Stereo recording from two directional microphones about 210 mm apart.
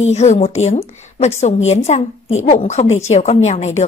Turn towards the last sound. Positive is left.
turn(degrees=35)  # may be behind; listen again after turning